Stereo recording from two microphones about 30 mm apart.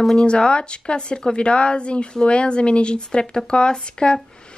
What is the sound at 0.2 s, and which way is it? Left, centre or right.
Speech, left.